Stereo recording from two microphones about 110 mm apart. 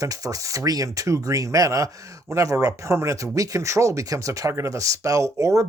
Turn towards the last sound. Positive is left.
turn(degrees=-30)  # may be behind; listen again after turning